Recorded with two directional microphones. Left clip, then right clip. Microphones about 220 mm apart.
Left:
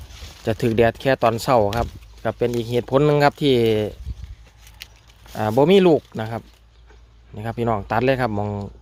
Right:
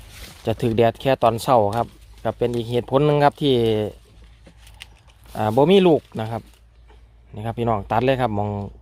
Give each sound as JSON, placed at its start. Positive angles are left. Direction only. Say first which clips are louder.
{"t": 0.4, "sound": "speech", "louder": "left 1 dB", "side_deg": 0}
{"t": 5.3, "sound": "speech", "louder": "even", "side_deg": 0}